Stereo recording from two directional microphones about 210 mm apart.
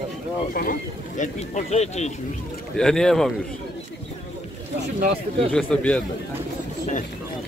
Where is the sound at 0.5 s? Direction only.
40° left (ahead or behind).